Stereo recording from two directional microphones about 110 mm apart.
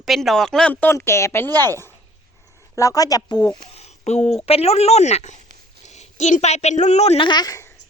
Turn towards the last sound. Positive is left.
turn(degrees=40)  # may be behind; listen again after turning